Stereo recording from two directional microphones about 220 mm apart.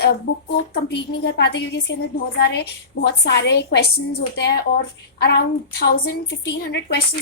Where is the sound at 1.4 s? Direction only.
50° left (ahead or behind).